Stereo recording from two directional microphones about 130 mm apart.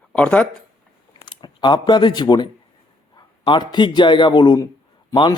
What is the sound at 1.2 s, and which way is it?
A man's voice, 35° left (ahead or behind).